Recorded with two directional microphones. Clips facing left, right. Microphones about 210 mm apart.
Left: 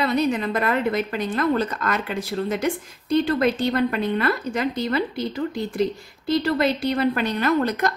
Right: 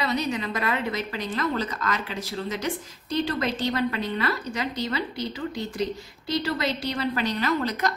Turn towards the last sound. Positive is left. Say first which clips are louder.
# left 5 dB
turn(degrees=55)  # may be behind; listen again after turning